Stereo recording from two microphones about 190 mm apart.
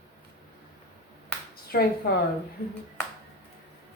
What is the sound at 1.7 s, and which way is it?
Speech, 55° left (ahead or behind).